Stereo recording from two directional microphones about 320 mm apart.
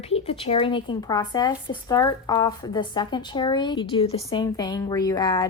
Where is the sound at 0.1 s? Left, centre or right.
Centre.